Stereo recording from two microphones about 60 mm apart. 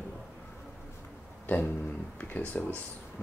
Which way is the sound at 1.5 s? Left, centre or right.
Left.